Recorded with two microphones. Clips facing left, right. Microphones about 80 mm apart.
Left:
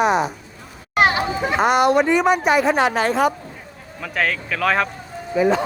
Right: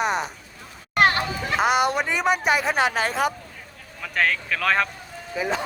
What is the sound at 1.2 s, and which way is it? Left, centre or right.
Music, left.